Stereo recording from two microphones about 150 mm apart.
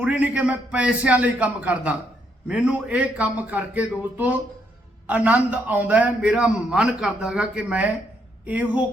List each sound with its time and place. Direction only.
0.0 s a man's voice: 10° right (ahead or behind)